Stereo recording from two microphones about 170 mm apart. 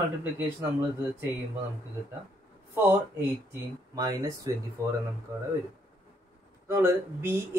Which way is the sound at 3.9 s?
20° right (ahead or behind).